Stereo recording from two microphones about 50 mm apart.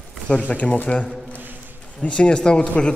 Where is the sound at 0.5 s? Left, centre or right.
Left.